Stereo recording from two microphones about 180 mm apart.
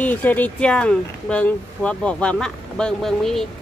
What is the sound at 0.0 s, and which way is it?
Speech, 10° left (ahead or behind).